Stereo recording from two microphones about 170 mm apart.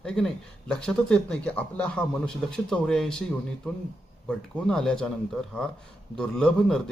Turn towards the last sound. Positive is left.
turn(degrees=5)  # may be behind; listen again after turning